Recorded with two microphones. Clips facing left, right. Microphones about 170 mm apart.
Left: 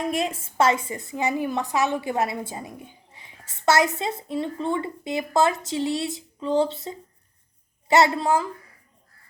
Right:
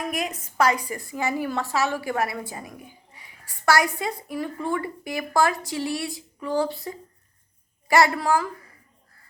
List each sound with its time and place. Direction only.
0.0 s a woman's voice: 25° left (ahead or behind)